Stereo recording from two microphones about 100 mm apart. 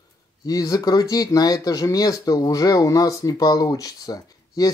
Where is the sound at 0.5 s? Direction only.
40° left (ahead or behind).